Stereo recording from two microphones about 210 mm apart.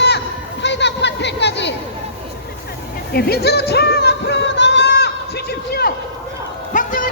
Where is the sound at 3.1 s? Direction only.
50° left (ahead or behind).